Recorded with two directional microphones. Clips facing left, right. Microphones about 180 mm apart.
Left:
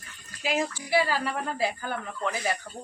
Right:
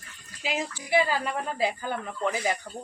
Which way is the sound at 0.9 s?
20° right (ahead or behind).